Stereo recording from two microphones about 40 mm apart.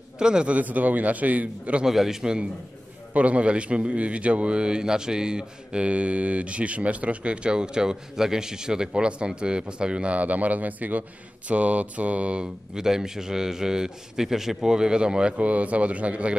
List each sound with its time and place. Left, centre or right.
0.2 s a man's voice: centre
0.5 s a man's voice: right
1.9 s a man's voice: centre
3.1 s a man's voice: right
10.1 s a man's voice: right
12.7 s a man's voice: centre
15.3 s a man's voice: right